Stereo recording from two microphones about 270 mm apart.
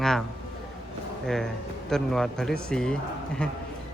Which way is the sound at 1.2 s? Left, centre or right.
Centre.